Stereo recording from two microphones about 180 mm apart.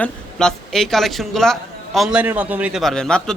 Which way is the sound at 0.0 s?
5° left (ahead or behind).